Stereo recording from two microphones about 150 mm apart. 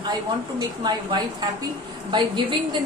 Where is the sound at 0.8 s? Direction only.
30° right (ahead or behind).